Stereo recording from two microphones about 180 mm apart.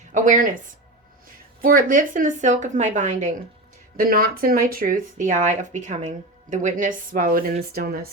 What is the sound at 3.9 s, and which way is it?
A woman's voice, 55° right (ahead or behind).